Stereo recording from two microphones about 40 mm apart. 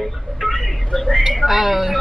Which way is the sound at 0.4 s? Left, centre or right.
Centre.